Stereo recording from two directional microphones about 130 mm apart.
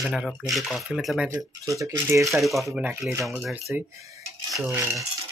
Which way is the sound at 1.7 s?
25° right (ahead or behind).